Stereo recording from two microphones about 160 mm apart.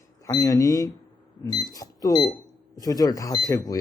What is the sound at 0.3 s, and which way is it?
Speech, 20° left (ahead or behind).